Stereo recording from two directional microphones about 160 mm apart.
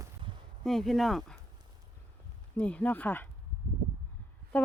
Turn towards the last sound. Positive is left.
turn(degrees=10)  # may be behind; listen again after turning